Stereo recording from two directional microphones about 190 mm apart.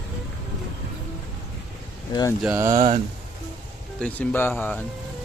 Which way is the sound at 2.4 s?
5° right (ahead or behind).